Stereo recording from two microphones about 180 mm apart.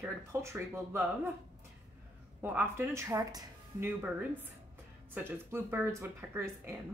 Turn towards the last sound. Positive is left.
turn(degrees=-15)  # may be behind; listen again after turning